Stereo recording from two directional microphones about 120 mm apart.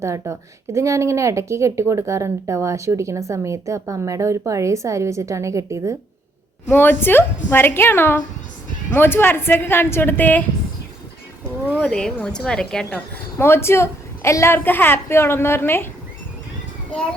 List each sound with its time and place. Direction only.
0.0 s a woman's voice: 25° right (ahead or behind)
6.7 s a woman's voice: 15° left (ahead or behind)
11.7 s a woman's voice: 10° left (ahead or behind)
13.4 s a woman's voice: 20° left (ahead or behind)